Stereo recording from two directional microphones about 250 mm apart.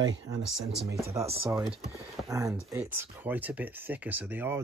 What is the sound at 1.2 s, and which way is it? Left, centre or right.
Speech, right.